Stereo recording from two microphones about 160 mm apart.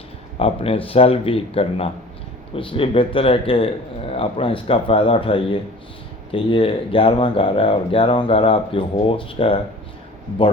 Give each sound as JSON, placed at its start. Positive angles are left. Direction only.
{"t": 0.3, "sound": "speech", "side_deg": 35}